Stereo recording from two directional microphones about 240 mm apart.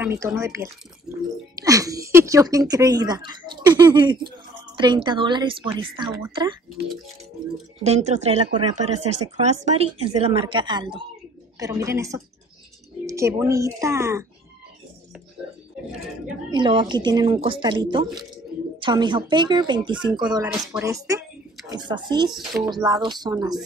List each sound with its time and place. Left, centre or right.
0.0 s speech: centre
7.8 s speech: right
8.9 s speech: right
9.4 s speech: right; by 14.2 s centre
16.4 s speech: centre
22.3 s speech: centre
22.8 s speech: centre